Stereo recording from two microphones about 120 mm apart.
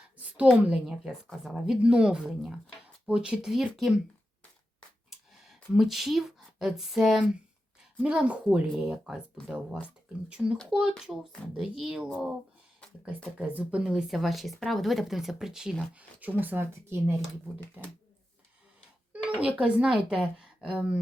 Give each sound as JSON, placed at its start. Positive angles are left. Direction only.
{"t": 0.3, "sound": "speech", "side_deg": -5}
{"t": 5.1, "sound": "a sound", "side_deg": -5}
{"t": 5.7, "sound": "speech", "side_deg": 0}
{"t": 13.5, "sound": "speech", "side_deg": -10}
{"t": 19.1, "sound": "speech", "side_deg": -10}